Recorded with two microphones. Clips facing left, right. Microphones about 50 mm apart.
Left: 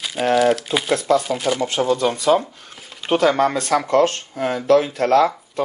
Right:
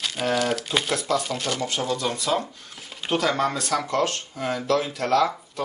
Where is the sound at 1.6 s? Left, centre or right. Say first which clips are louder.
Left 8 dB; left.